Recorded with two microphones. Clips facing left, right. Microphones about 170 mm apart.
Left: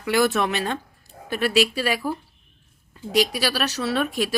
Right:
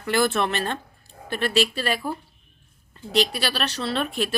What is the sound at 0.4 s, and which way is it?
A woman's voice, 10° left (ahead or behind).